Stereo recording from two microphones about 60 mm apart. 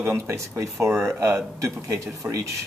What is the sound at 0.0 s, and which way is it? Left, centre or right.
Speech, right.